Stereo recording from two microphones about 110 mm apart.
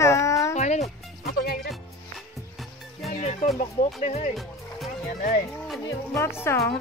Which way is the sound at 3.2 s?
90° left.